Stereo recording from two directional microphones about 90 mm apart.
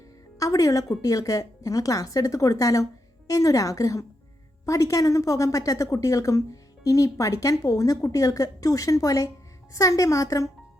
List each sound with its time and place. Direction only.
0.3 s a woman's voice: 40° left (ahead or behind)